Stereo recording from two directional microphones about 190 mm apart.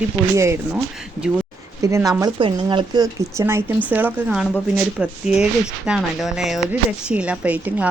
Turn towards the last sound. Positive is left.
turn(degrees=-10)  # may be behind; listen again after turning